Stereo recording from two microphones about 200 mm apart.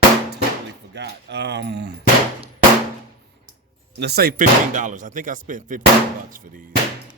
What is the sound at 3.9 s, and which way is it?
Speech, 55° right (ahead or behind).